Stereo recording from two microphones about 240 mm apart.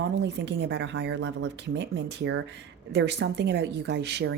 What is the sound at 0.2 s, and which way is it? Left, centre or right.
A woman's voice, right.